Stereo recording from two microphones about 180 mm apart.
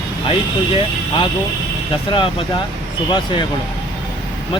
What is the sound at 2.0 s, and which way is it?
Speech, 30° left (ahead or behind).